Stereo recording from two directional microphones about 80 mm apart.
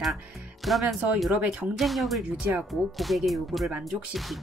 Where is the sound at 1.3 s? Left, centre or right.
Centre.